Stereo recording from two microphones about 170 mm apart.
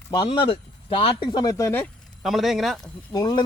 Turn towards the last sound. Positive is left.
turn(degrees=25)  # may be behind; listen again after turning